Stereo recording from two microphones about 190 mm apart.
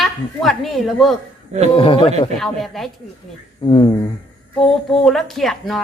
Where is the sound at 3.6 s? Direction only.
25° left (ahead or behind).